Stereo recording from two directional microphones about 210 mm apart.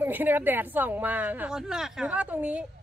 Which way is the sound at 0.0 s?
10° right (ahead or behind).